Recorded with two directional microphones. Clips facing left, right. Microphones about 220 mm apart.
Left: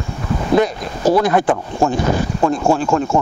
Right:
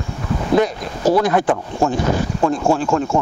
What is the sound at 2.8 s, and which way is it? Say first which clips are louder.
Speech: left 1 dB; 25° left (ahead or behind).